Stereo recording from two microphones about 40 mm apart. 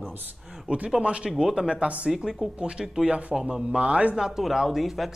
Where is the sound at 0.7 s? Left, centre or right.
Right.